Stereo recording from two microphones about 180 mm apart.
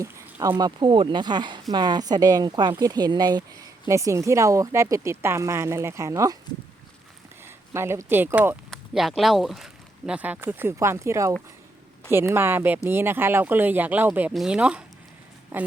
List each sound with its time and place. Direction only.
0.0 s a sound: 15° right (ahead or behind)
0.5 s speech: 25° right (ahead or behind)
7.4 s speech: 15° right (ahead or behind)
8.7 s speech: centre (ahead or behind)